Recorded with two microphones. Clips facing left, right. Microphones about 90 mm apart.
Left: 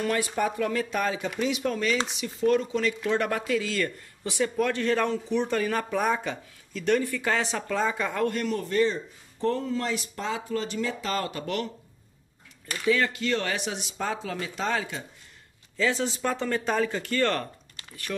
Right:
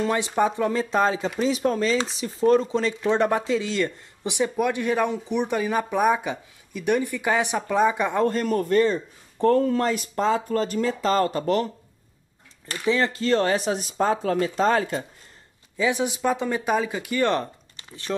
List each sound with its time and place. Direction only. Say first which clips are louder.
0.0 s chopping: right 4 dB; 25° right (ahead or behind)
8.3 s a man's voice: right 6 dB; 40° right (ahead or behind)
12.8 s speech: right 2 dB; 30° right (ahead or behind); by 15.0 s 45° right (ahead or behind)
15.8 s speech: right 3 dB; 15° right (ahead or behind)